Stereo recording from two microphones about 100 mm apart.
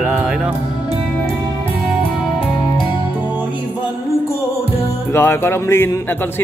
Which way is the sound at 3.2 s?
15° right (ahead or behind).